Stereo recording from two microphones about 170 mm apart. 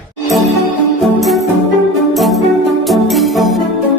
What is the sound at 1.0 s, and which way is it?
Music, centre (ahead or behind).